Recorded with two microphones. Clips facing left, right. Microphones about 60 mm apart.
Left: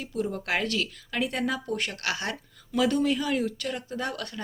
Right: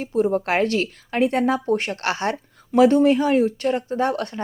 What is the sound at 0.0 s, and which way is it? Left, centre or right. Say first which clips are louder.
Speech: right 10 dB; right.